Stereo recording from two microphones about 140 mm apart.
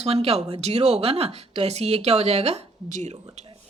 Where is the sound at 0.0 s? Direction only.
45° right (ahead or behind).